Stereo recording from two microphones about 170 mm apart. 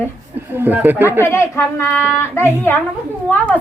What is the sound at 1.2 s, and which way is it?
Speech, 15° left (ahead or behind).